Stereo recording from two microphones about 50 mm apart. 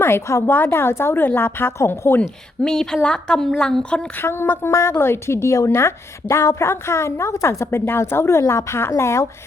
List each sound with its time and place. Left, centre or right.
0.0 s a woman's voice: left
0.4 s speech: left
2.6 s a woman's voice: centre
4.2 s a woman's voice: left